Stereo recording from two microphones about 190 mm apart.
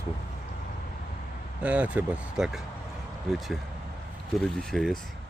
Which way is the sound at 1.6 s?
5° right (ahead or behind).